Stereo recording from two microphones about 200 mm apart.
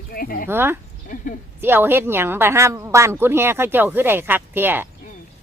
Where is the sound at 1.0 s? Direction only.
40° left (ahead or behind).